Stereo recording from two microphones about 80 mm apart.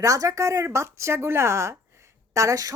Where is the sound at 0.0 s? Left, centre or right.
Right.